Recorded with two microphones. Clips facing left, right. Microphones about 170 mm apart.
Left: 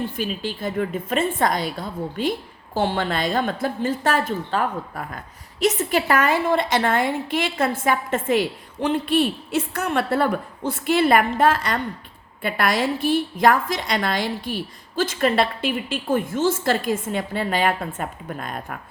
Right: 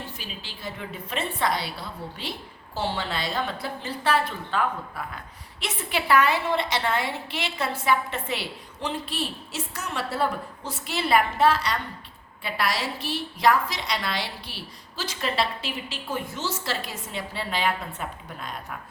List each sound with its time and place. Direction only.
0.2 s a woman's voice: 50° left (ahead or behind)